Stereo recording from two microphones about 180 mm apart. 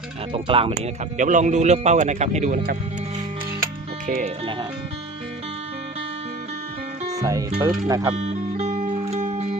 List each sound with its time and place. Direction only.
0.3 s speech: 30° right (ahead or behind)
0.8 s speech: 45° right (ahead or behind)
4.0 s speech: 45° right (ahead or behind)
7.2 s speech: 20° right (ahead or behind)
8.1 s music: 35° right (ahead or behind)